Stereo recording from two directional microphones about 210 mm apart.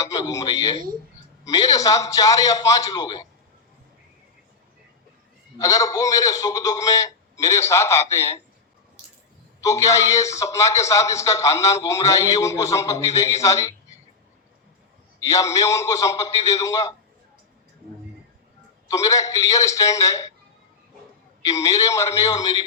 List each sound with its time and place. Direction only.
0.0 s a man's voice: 15° left (ahead or behind)
5.5 s a man's voice: 15° left (ahead or behind)
9.6 s a man's voice: 15° left (ahead or behind)
15.2 s a man's voice: 15° left (ahead or behind)
18.9 s a man's voice: 15° left (ahead or behind)
21.4 s a man's voice: 15° left (ahead or behind)